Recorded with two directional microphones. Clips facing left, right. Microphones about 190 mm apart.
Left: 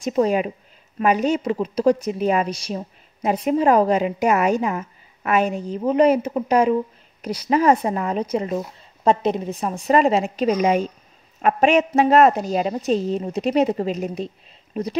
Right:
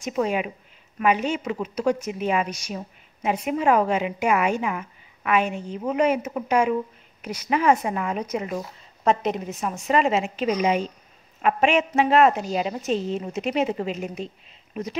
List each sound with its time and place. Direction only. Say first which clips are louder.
0.0 s a woman's voice: left 5 dB; 35° left (ahead or behind)